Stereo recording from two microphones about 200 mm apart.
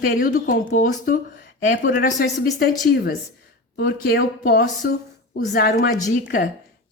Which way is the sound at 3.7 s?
50° left (ahead or behind).